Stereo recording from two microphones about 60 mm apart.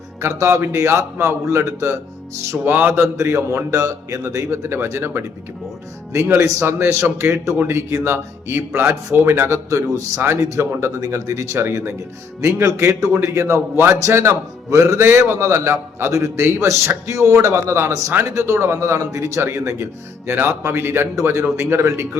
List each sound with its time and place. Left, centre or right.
0.2 s a man's voice: right
2.6 s speech: right
3.2 s a man's voice: right
9.6 s a man's voice: right
10.6 s a man's voice: right
12.5 s a man's voice: right
19.4 s a man's voice: right